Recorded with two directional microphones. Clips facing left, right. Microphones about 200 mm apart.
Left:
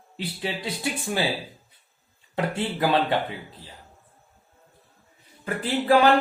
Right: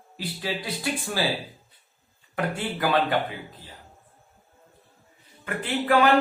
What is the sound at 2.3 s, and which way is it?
Speech, 25° left (ahead or behind).